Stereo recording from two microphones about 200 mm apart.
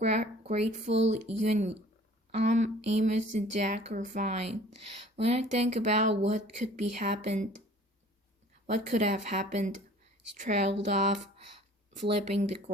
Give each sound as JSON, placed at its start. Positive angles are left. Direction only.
{"t": 0.0, "sound": "speech", "side_deg": -35}
{"t": 0.9, "sound": "speech", "side_deg": -65}
{"t": 1.1, "sound": "speech", "side_deg": -35}
{"t": 8.6, "sound": "speech", "side_deg": -35}
{"t": 11.9, "sound": "speech", "side_deg": -35}